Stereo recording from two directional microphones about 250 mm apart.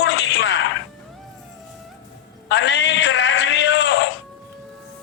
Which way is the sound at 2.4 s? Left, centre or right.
Left.